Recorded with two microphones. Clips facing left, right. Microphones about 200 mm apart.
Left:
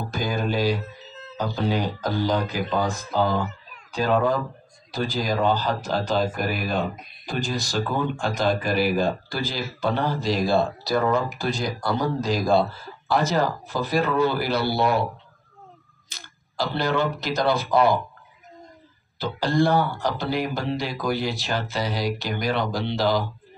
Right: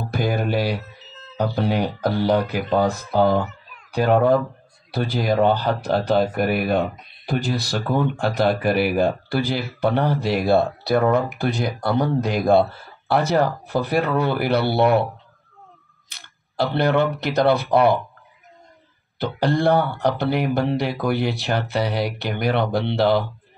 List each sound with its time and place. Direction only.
0.1 s mantra: 65° right (ahead or behind)
1.3 s speech: 60° right (ahead or behind)
16.1 s speech: 60° right (ahead or behind)
19.1 s speech: 60° right (ahead or behind)